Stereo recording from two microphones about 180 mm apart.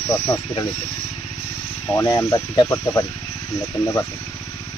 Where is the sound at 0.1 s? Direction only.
20° left (ahead or behind).